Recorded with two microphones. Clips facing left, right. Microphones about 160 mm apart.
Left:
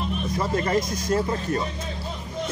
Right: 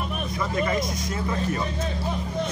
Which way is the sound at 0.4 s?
40° left (ahead or behind).